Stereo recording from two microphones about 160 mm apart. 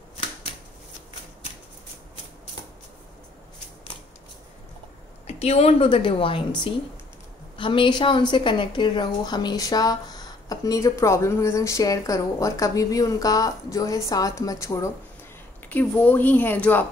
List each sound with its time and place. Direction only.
5.2 s a woman's voice: 40° left (ahead or behind); by 16.8 s 10° left (ahead or behind)